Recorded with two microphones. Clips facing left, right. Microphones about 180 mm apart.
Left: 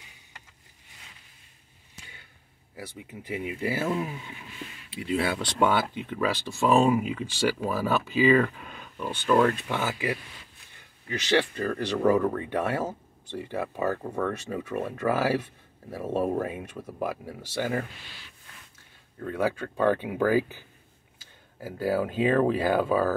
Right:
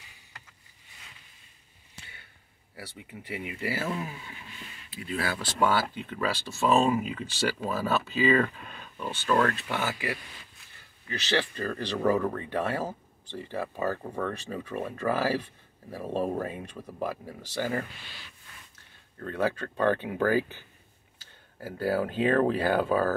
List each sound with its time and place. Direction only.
2.7 s speech: 20° left (ahead or behind)
4.9 s speech: 25° left (ahead or behind)
5.4 s speech: 5° right (ahead or behind)
5.8 s speech: 15° left (ahead or behind)
19.1 s speech: 10° left (ahead or behind)